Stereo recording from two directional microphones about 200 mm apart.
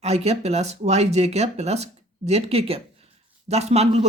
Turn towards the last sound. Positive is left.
turn(degrees=-30)  # may be behind; listen again after turning